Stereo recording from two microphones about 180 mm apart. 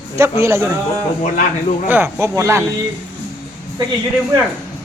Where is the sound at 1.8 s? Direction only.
10° right (ahead or behind).